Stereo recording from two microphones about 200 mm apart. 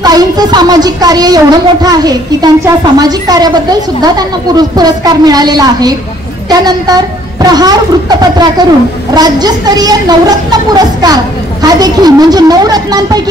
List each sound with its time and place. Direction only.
0.0 s a woman's voice: 20° right (ahead or behind)